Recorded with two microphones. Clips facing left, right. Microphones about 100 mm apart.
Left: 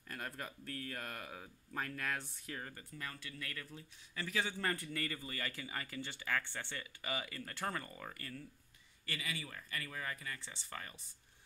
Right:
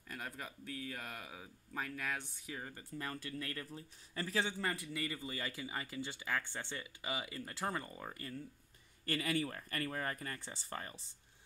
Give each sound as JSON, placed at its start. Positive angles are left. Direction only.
{"t": 0.1, "sound": "speech", "side_deg": -5}
{"t": 2.9, "sound": "speech", "side_deg": -30}
{"t": 4.8, "sound": "speech", "side_deg": -15}
{"t": 9.0, "sound": "speech", "side_deg": -45}